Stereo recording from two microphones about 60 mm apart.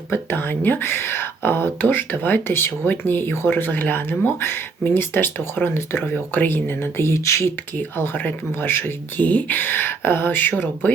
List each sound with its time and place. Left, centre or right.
0.1 s speech: left
4.4 s speech: left
7.0 s speech: left
7.8 s speech: left